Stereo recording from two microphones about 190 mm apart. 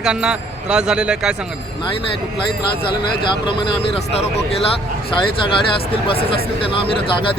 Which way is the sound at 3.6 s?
30° left (ahead or behind).